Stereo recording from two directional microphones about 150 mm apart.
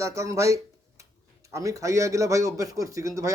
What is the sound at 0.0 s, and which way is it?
Speech, 20° right (ahead or behind).